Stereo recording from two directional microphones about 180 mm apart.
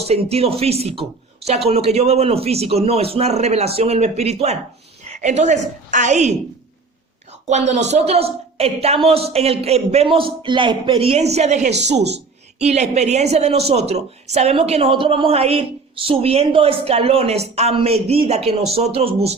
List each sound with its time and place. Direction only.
0.0 s speech: 35° right (ahead or behind)
7.4 s speech: 40° right (ahead or behind)